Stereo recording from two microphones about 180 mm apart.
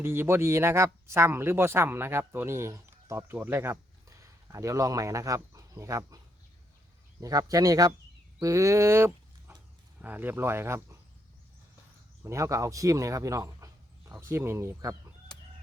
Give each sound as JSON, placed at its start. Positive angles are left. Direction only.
{"t": 0.0, "sound": "speech", "side_deg": -15}
{"t": 7.2, "sound": "speech", "side_deg": -20}
{"t": 12.2, "sound": "speech", "side_deg": -15}